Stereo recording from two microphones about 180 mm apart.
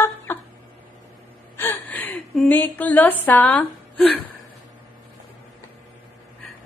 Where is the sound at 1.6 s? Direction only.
10° left (ahead or behind).